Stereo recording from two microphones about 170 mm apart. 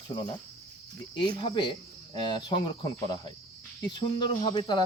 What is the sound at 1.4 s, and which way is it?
Speech, 30° left (ahead or behind).